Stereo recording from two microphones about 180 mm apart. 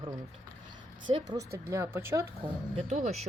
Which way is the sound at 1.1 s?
20° right (ahead or behind).